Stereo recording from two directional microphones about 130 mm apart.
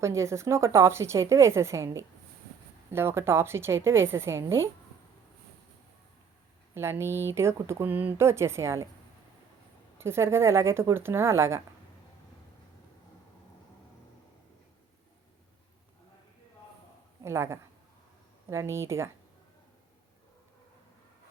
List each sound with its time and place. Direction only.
0.0 s speech: 20° right (ahead or behind)
6.7 s speech: 20° right (ahead or behind)
10.0 s speech: 20° right (ahead or behind)
17.2 s speech: 20° right (ahead or behind)